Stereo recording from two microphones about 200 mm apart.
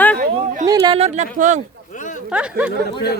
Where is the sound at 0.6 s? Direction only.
20° right (ahead or behind); by 1.6 s 40° right (ahead or behind).